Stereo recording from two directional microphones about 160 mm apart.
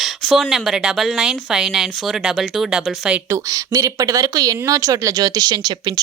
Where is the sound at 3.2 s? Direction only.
20° right (ahead or behind).